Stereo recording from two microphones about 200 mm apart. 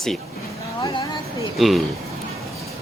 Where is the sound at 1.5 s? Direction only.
Centre (ahead or behind).